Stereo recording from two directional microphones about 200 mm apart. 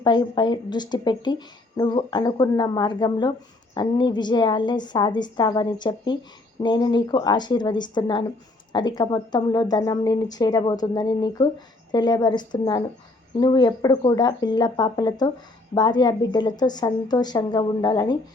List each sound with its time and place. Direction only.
0.0 s speech: 20° left (ahead or behind)